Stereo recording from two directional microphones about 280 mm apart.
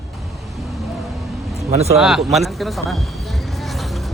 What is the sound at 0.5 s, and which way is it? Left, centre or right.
Vehicle, centre.